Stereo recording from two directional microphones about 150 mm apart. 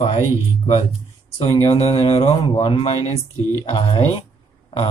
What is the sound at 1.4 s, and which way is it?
Speech, 40° left (ahead or behind).